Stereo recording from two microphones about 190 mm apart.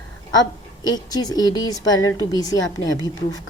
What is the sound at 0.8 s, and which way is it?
Speech, 20° left (ahead or behind).